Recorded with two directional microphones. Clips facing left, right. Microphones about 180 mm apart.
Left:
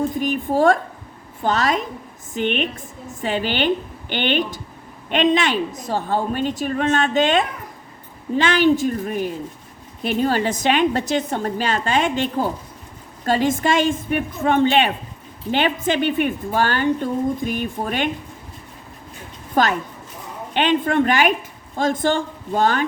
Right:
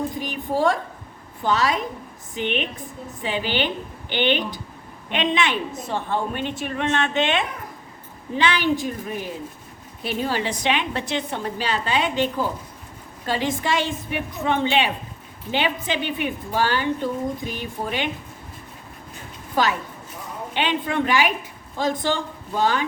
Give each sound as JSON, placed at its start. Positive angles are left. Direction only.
{"t": 0.2, "sound": "a woman's voice", "side_deg": 50}
{"t": 19.6, "sound": "a woman's voice", "side_deg": 50}